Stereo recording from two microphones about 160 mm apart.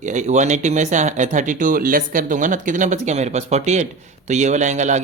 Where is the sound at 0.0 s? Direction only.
50° right (ahead or behind).